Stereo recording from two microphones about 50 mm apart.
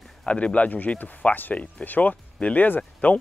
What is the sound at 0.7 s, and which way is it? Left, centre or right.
Speech, left.